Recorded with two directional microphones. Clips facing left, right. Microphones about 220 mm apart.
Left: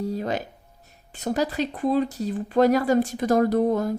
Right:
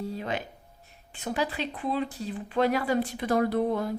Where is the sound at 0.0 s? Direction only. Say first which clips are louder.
Left 5 dB; 40° left (ahead or behind).